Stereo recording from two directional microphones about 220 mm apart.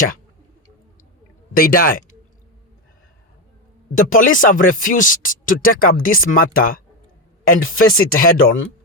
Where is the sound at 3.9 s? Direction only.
40° left (ahead or behind).